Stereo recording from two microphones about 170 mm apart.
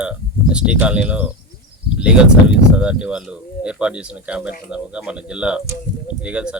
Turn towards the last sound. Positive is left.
turn(degrees=-5)  # may be behind; listen again after turning